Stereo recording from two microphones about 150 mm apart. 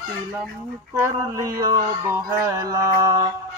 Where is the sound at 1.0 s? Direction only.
20° right (ahead or behind).